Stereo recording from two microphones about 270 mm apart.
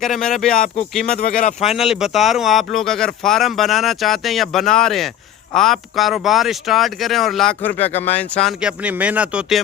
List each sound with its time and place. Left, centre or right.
0.0 s speech: centre
1.2 s speech: left
1.6 s speech: centre
7.8 s speech: left
8.2 s speech: centre